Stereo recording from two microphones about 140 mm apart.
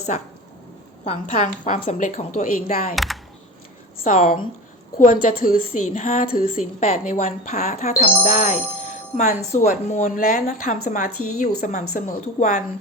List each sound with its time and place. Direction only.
1.0 s a woman's voice: 55° left (ahead or behind)
2.9 s speech: centre (ahead or behind)
4.0 s a woman's voice: 60° left (ahead or behind); by 6.8 s 80° left
6.8 s a woman's voice: 55° left (ahead or behind); by 10.4 s 85° left
10.4 s a woman's voice: 65° left (ahead or behind)